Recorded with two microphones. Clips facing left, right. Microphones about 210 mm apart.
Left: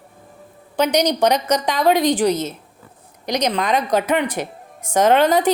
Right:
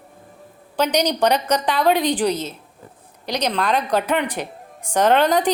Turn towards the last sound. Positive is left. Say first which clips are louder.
# left 2 dB
turn(degrees=10)  # may be behind; listen again after turning